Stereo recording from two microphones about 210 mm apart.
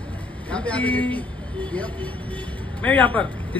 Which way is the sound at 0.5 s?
5° left (ahead or behind).